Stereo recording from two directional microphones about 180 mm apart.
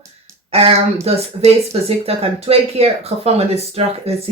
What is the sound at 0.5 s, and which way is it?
Speech, 35° right (ahead or behind).